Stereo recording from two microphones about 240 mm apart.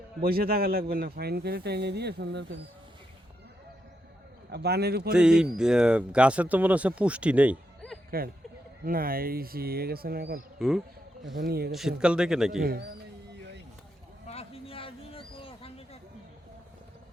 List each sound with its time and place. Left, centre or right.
0.2 s speech: right
4.5 s speech: right
5.1 s speech: centre
8.1 s speech: right
10.6 s speech: centre
11.3 s speech: right
11.7 s speech: centre
12.6 s speech: right
14.3 s a sound: left